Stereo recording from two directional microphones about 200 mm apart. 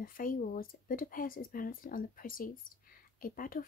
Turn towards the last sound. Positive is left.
turn(degrees=45)  # may be behind; listen again after turning